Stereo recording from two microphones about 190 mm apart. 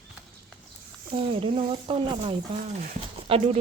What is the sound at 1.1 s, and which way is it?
Speech, 30° right (ahead or behind).